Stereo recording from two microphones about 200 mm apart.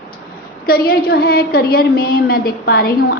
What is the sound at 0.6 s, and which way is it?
A woman's voice, 50° left (ahead or behind).